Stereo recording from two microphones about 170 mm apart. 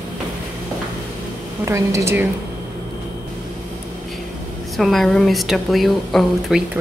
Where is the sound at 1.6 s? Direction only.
15° right (ahead or behind).